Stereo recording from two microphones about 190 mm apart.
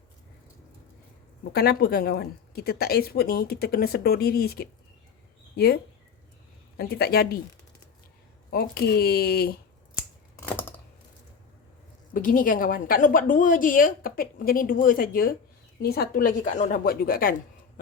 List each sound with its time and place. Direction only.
1.5 s speech: 55° left (ahead or behind)
8.4 s speech: 55° left (ahead or behind)
10.4 s typing: 10° left (ahead or behind)
12.1 s a woman's voice: 45° left (ahead or behind)